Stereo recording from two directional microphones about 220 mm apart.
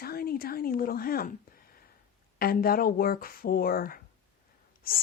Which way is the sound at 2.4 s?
40° left (ahead or behind).